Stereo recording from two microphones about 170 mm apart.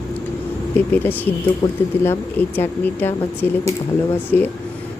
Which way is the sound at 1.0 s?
10° left (ahead or behind).